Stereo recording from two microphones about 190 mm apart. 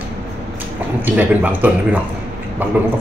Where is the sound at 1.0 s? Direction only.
10° right (ahead or behind).